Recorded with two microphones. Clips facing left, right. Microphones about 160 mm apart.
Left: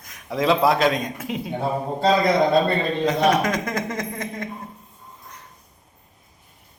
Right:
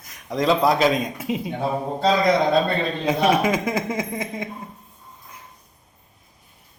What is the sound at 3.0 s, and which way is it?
Speech, 5° right (ahead or behind).